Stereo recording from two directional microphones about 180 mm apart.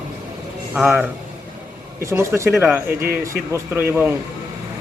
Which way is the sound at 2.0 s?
15° right (ahead or behind).